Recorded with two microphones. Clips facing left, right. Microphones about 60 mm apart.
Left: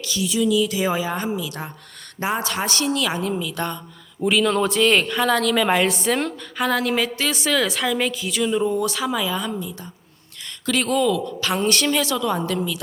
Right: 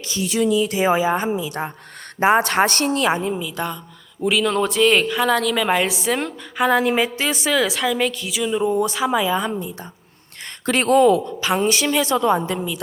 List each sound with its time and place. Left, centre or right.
0.0 s a sound: right
0.3 s speech: right
0.5 s a woman's voice: right
0.8 s a woman's voice: right
2.3 s a woman's voice: right
3.3 s a woman's voice: centre; by 9.4 s right
10.7 s speech: right
11.5 s a woman's voice: centre
12.0 s a woman's voice: right